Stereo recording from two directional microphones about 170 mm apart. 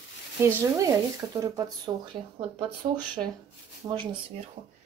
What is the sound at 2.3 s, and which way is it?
Speech, 30° right (ahead or behind).